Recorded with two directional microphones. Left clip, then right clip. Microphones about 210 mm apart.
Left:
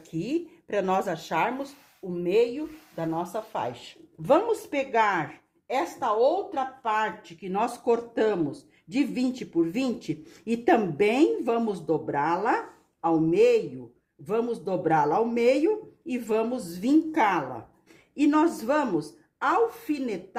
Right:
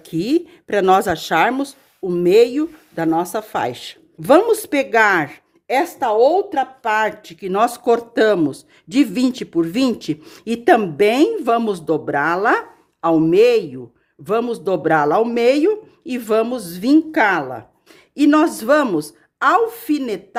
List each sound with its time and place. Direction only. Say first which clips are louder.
0.0 s speech: right 11 dB; 40° right (ahead or behind)